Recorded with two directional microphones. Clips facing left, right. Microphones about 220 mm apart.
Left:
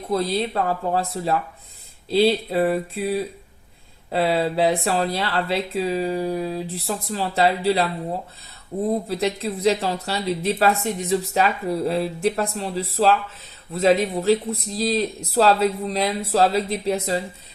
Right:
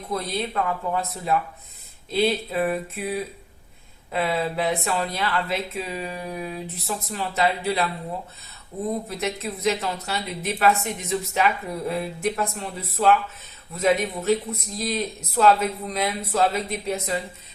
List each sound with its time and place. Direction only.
0.1 s speech: 30° left (ahead or behind)
9.0 s speech: 30° left (ahead or behind)